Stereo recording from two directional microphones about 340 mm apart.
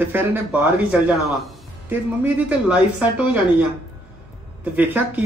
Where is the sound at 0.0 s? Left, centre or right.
Centre.